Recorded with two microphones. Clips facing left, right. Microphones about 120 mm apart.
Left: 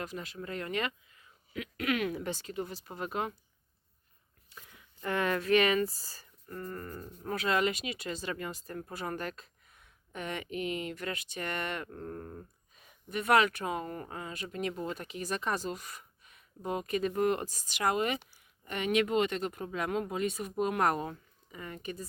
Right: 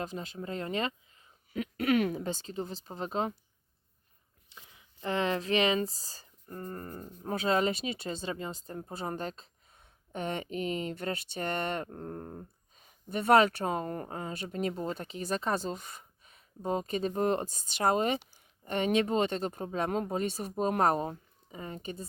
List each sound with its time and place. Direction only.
0.0 s speech: 30° right (ahead or behind)
2.1 s speech: 25° right (ahead or behind)
4.5 s speech: 15° right (ahead or behind)